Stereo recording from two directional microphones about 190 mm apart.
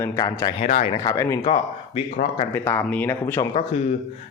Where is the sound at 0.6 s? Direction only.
35° left (ahead or behind).